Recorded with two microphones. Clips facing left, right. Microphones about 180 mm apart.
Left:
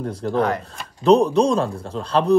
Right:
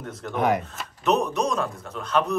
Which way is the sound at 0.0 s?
35° left (ahead or behind).